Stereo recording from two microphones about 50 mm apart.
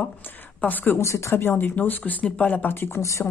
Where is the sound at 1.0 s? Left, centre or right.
Left.